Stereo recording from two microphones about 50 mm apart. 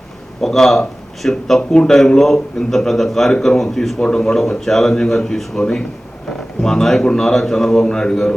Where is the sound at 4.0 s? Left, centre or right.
Centre.